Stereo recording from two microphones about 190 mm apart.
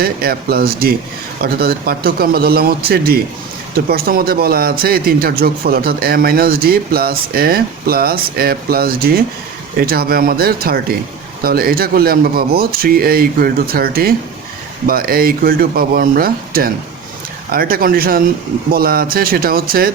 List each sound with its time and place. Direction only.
0.0 s speech: 50° right (ahead or behind)